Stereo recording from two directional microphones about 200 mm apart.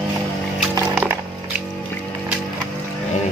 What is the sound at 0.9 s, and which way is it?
Music, 10° right (ahead or behind).